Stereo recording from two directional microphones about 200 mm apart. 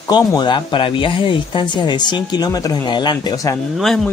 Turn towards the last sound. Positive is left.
turn(degrees=0)  # may be behind; listen again after turning